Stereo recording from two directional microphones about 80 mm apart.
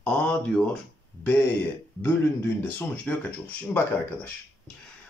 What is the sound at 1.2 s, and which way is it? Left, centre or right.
Speech, left.